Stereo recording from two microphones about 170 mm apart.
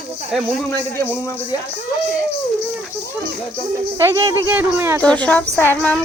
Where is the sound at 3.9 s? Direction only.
20° right (ahead or behind).